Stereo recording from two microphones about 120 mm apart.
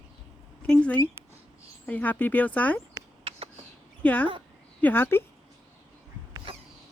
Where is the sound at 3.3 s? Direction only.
50° right (ahead or behind).